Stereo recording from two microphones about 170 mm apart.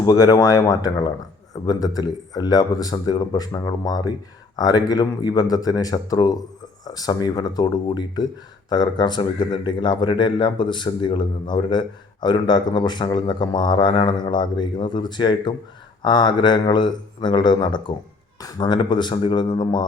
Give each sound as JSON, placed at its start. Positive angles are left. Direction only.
{"t": 0.0, "sound": "speech", "side_deg": 20}